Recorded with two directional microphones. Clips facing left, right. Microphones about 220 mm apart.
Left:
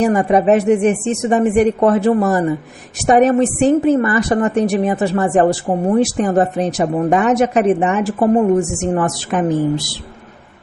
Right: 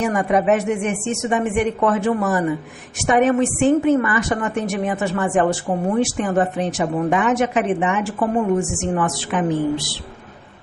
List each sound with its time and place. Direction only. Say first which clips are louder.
0.0 s a woman's voice: left 5 dB; 35° left (ahead or behind)